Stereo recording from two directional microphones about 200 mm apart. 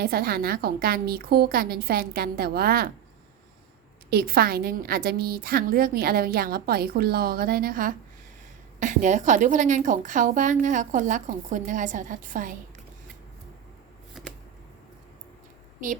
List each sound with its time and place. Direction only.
0.0 s a woman's voice: 50° right (ahead or behind)
4.1 s a woman's voice: 50° right (ahead or behind)
15.8 s a woman's voice: 40° right (ahead or behind)